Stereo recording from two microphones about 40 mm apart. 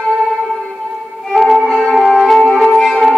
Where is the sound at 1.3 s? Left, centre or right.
Centre.